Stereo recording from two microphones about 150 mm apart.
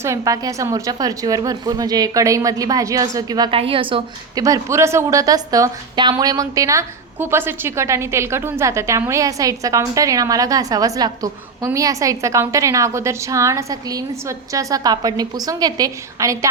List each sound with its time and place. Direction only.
0.0 s a woman's voice: 20° right (ahead or behind)
3.6 s a woman's voice: 35° right (ahead or behind)
4.4 s a woman's voice: 20° right (ahead or behind)